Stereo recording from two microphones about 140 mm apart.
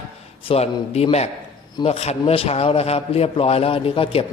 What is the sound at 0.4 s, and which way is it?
A man's voice, 45° left (ahead or behind).